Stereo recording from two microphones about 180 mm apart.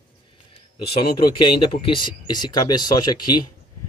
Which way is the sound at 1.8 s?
25° left (ahead or behind).